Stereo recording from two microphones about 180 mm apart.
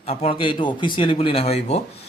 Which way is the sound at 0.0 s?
35° left (ahead or behind).